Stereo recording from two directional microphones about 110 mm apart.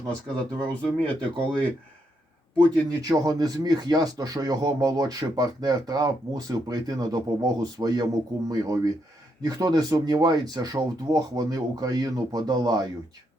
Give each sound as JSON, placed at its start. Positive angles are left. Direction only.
{"t": 0.7, "sound": "speech", "side_deg": 15}
{"t": 3.0, "sound": "speech", "side_deg": -35}